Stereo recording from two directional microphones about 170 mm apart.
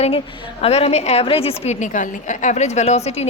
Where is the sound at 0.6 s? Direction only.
35° left (ahead or behind).